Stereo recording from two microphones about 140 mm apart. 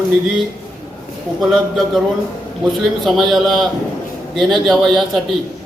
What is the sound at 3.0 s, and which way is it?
A man's voice, centre (ahead or behind).